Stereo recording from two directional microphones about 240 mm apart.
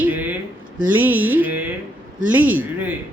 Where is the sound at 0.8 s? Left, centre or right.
Centre.